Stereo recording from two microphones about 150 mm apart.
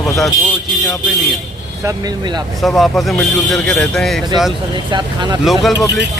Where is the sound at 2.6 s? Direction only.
Centre (ahead or behind).